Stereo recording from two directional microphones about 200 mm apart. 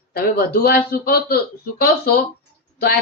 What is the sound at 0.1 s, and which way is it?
Speech, 50° left (ahead or behind).